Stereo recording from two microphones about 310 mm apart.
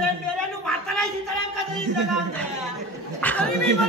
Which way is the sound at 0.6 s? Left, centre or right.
Centre.